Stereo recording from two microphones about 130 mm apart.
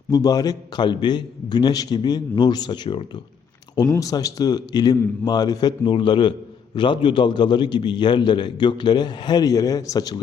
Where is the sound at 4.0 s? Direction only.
25° left (ahead or behind).